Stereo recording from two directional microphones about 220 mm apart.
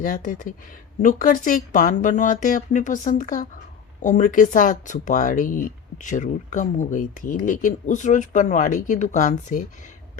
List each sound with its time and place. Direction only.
0.0 s speech: 40° left (ahead or behind)